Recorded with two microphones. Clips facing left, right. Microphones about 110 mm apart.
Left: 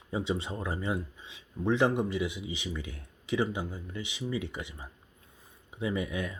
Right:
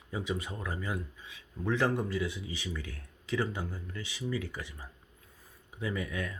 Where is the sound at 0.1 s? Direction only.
25° left (ahead or behind).